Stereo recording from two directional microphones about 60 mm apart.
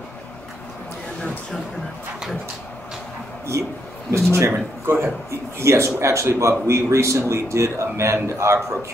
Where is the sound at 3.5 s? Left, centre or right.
Right.